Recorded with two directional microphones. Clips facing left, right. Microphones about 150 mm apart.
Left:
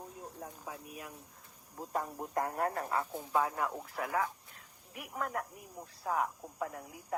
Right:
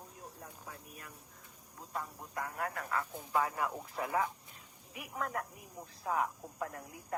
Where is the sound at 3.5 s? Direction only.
Centre (ahead or behind).